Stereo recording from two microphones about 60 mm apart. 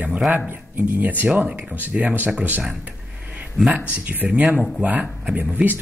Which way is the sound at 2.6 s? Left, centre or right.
Right.